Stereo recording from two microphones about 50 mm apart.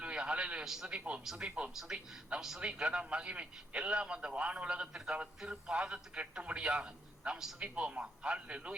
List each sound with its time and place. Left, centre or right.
0.0 s a sound: right
0.6 s a man's voice: centre
0.9 s a man's voice: right
1.7 s a man's voice: centre
2.6 s a man's voice: right
7.6 s a man's voice: right